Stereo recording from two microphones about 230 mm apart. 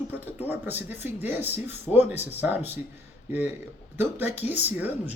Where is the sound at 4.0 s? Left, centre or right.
Centre.